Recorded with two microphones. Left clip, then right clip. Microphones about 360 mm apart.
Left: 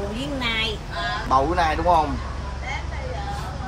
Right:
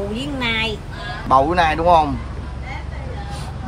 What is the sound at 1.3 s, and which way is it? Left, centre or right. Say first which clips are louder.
Speech: right 6 dB; right.